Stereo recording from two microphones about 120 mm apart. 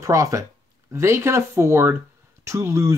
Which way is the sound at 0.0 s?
25° right (ahead or behind).